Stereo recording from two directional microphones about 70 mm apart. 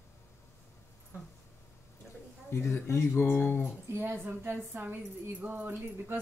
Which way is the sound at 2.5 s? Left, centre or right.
Left.